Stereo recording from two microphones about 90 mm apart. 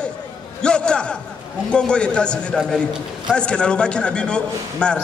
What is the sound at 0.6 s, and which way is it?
A man's voice, 10° left (ahead or behind).